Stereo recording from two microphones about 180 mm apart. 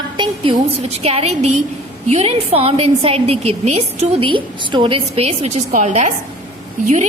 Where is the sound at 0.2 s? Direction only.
30° right (ahead or behind).